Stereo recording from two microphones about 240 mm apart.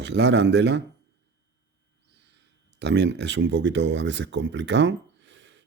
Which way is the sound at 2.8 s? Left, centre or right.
Right.